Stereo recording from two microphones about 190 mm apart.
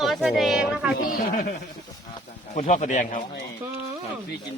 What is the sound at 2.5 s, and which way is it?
Speech, 40° left (ahead or behind).